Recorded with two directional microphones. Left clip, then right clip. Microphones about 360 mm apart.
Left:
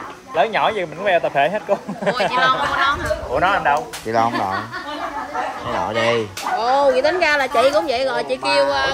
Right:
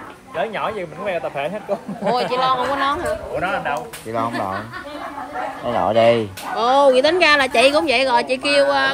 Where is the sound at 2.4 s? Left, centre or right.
Centre.